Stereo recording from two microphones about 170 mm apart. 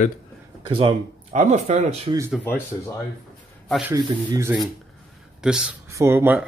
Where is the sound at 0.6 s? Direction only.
30° right (ahead or behind).